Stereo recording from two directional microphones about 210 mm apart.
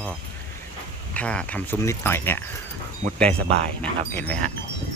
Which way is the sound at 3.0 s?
30° right (ahead or behind).